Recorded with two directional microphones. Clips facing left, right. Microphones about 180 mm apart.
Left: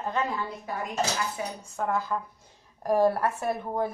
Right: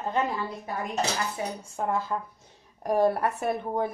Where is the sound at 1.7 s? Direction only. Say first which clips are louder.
Even; 25° right (ahead or behind).